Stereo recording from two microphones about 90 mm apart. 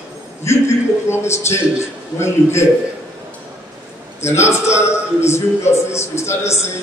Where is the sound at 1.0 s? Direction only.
30° left (ahead or behind).